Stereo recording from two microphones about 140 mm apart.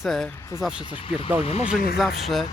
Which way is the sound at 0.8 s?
35° left (ahead or behind).